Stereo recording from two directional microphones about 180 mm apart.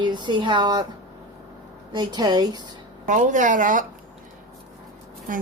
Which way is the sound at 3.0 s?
45° right (ahead or behind).